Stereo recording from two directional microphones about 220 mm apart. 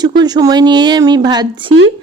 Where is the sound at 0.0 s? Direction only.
20° right (ahead or behind).